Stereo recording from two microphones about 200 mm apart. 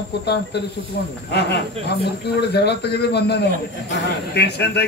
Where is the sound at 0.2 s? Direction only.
55° left (ahead or behind).